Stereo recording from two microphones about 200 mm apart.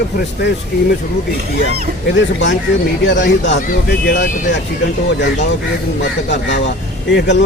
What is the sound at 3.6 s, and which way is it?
Speech, 40° left (ahead or behind).